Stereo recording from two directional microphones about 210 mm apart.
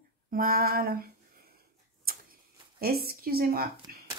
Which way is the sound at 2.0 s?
45° right (ahead or behind).